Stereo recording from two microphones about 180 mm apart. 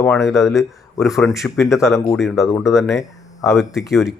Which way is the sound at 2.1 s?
Centre (ahead or behind).